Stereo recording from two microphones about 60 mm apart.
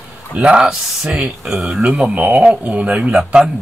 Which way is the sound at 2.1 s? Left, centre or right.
Right.